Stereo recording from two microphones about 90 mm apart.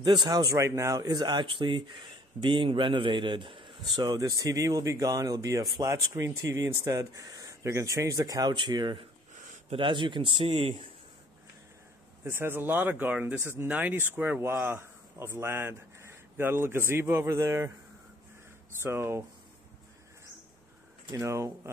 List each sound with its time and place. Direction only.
0.0 s speech: 55° right (ahead or behind)
3.9 s speech: 50° right (ahead or behind)
8.5 s speech: 60° right (ahead or behind)
9.7 s speech: 70° right (ahead or behind); by 10.9 s 90° right
12.3 s speech: 25° right (ahead or behind)
18.8 s speech: 30° right (ahead or behind)
21.1 s speech: 35° right (ahead or behind)